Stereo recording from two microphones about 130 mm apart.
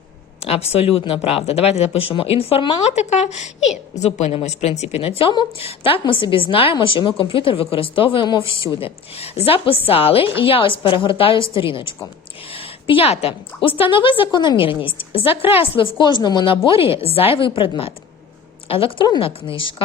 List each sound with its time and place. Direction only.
0.4 s a woman's voice: 50° left (ahead or behind)
2.8 s a woman's voice: 60° left (ahead or behind)